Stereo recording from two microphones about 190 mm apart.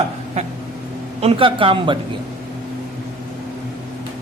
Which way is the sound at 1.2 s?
30° right (ahead or behind).